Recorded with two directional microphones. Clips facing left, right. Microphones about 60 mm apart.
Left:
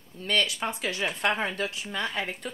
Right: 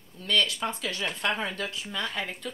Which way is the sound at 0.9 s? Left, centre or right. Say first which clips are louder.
Left 2 dB; centre.